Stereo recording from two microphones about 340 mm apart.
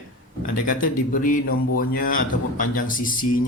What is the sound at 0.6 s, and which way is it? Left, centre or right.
Speech, left.